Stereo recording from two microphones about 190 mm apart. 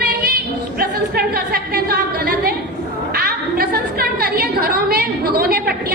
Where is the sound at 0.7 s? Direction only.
55° right (ahead or behind).